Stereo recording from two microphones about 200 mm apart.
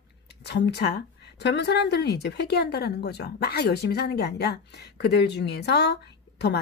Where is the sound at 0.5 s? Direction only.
55° left (ahead or behind).